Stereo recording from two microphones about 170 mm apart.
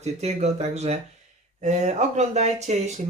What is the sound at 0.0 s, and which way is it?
Speech, 40° right (ahead or behind).